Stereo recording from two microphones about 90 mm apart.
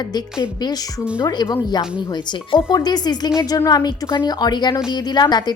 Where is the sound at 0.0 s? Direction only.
50° left (ahead or behind).